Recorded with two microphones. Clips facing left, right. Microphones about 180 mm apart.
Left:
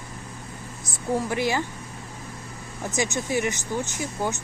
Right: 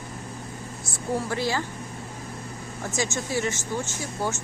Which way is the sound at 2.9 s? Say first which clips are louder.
Left 2 dB; 15° left (ahead or behind).